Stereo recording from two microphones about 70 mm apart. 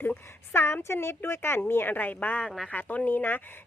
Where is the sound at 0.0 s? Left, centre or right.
Left.